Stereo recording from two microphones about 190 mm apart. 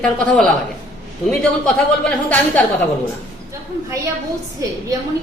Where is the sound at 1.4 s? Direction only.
5° left (ahead or behind).